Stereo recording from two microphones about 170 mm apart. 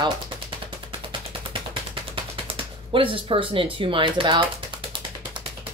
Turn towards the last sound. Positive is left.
turn(degrees=-30)  # may be behind; listen again after turning